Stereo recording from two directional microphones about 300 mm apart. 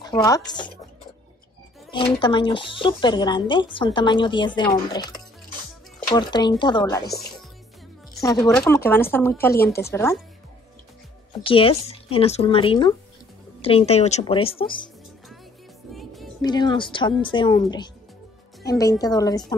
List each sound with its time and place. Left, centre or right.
0.0 s a woman's voice: centre
1.9 s a woman's voice: centre
6.1 s a woman's voice: centre
8.2 s a woman's voice: centre
11.4 s a woman's voice: centre
15.9 s music: centre
16.3 s a woman's voice: centre